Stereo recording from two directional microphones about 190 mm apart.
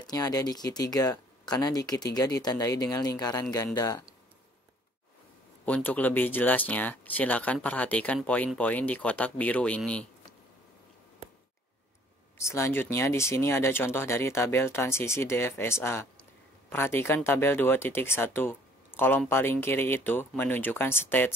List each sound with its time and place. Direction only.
0.0 s speech: 20° left (ahead or behind)
5.9 s speech: 10° left (ahead or behind)
12.4 s speech: 15° left (ahead or behind)